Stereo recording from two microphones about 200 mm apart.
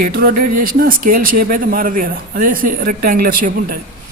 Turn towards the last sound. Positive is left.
turn(degrees=-45)  # may be behind; listen again after turning